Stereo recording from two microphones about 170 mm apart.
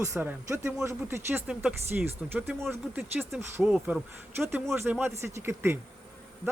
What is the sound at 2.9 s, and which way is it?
Speech, centre (ahead or behind).